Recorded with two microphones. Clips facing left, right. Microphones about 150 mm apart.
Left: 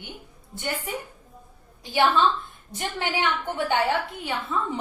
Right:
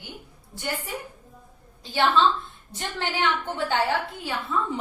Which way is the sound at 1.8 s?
15° left (ahead or behind).